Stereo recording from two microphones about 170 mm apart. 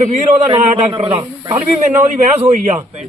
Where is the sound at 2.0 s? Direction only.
50° right (ahead or behind).